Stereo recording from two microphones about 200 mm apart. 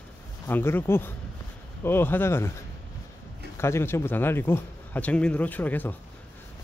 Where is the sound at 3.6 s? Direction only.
15° left (ahead or behind).